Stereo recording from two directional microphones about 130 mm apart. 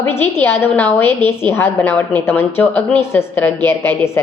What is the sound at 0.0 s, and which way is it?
A woman's voice, 15° left (ahead or behind).